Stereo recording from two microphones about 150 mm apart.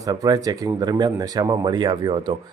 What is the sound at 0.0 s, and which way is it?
Speech, 25° right (ahead or behind).